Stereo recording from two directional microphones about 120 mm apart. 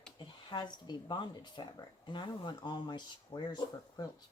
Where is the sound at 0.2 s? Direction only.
40° left (ahead or behind).